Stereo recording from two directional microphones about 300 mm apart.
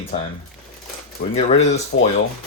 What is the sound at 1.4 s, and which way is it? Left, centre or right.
Speech, left.